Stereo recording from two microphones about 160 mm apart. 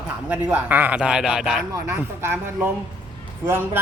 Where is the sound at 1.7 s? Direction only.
15° right (ahead or behind).